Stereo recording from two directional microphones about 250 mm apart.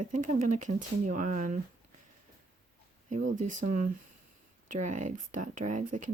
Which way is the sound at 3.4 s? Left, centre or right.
Right.